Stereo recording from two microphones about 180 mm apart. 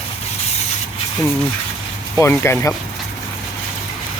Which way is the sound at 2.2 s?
15° left (ahead or behind).